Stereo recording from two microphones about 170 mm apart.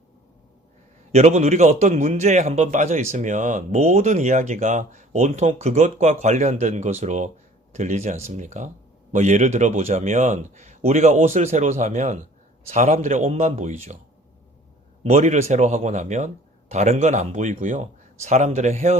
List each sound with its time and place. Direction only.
1.1 s a man's voice: 40° right (ahead or behind)
15.0 s a man's voice: 40° right (ahead or behind)